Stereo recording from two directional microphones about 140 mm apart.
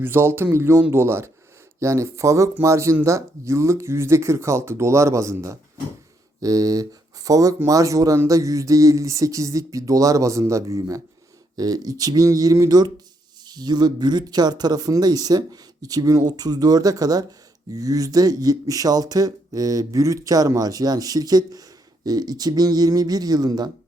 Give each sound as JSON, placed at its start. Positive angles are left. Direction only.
{"t": 0.0, "sound": "speech", "side_deg": -15}